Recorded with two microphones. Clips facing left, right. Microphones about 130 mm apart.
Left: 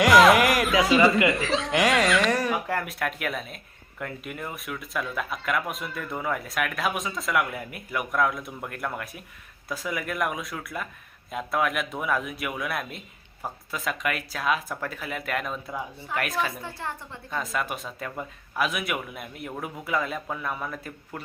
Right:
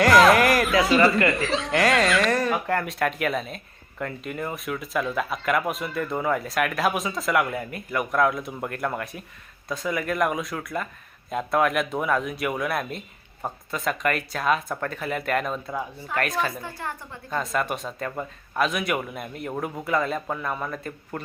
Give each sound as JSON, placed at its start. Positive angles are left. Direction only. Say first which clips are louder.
{"t": 0.0, "sound": "music", "louder": "right 1 dB", "side_deg": 0}
{"t": 0.9, "sound": "speech", "louder": "left 1 dB", "side_deg": 0}
{"t": 16.6, "sound": "a woman's voice", "louder": "right 1 dB", "side_deg": 25}
{"t": 17.3, "sound": "speech", "louder": "right 4 dB", "side_deg": 0}